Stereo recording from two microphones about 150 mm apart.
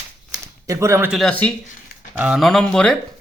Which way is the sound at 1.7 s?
55° left (ahead or behind).